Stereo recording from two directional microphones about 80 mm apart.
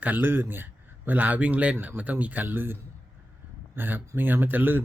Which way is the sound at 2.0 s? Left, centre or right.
Centre.